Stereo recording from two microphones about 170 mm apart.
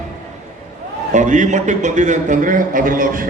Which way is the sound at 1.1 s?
45° right (ahead or behind).